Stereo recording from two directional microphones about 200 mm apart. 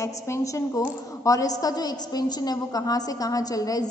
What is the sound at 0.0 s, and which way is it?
A woman's voice, 15° left (ahead or behind).